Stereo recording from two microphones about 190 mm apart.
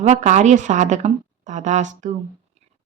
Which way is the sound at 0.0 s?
40° right (ahead or behind).